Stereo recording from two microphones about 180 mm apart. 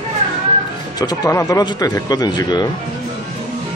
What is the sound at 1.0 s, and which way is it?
Speech, 20° left (ahead or behind).